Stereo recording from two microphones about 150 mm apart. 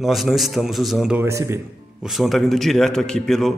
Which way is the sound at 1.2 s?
20° right (ahead or behind).